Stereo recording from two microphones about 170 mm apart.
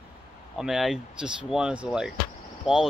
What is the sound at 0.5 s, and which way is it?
Speech, centre (ahead or behind).